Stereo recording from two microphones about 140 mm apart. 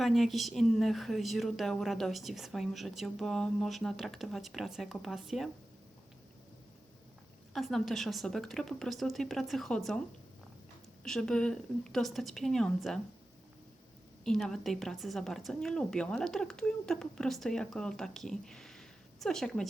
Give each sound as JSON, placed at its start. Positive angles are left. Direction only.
{"t": 0.0, "sound": "a woman's voice", "side_deg": 0}
{"t": 7.5, "sound": "a woman's voice", "side_deg": 0}
{"t": 11.0, "sound": "a woman's voice", "side_deg": 5}
{"t": 14.3, "sound": "a woman's voice", "side_deg": 5}